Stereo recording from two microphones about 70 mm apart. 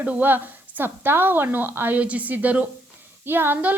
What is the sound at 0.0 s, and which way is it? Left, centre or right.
A woman's voice, right.